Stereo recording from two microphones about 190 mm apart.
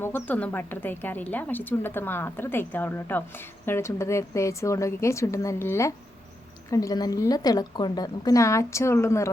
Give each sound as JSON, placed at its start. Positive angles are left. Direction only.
{"t": 0.0, "sound": "a woman's voice", "side_deg": 10}